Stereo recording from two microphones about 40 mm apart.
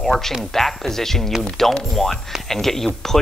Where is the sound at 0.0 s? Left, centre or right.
Centre.